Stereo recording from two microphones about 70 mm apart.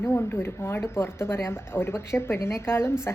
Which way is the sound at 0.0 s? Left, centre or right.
Left.